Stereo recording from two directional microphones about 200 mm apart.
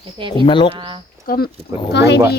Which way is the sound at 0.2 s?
25° right (ahead or behind).